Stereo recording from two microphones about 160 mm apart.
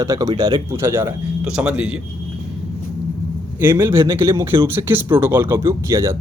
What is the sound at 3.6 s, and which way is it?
Speech, 15° right (ahead or behind).